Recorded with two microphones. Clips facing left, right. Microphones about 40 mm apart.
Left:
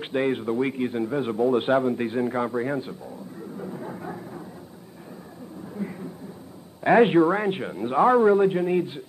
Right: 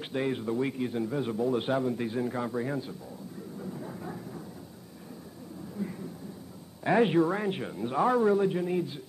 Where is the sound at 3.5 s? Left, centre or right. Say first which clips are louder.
Left 5 dB; left.